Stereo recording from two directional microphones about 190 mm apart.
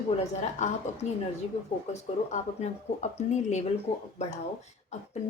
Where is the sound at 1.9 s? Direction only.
35° left (ahead or behind).